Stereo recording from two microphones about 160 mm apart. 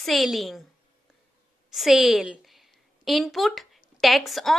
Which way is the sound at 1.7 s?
Centre (ahead or behind).